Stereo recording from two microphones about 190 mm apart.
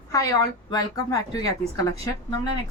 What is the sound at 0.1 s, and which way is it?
Speech, 15° left (ahead or behind).